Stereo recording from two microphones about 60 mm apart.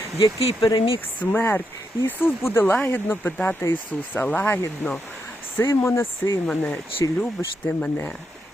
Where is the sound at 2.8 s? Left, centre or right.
Left.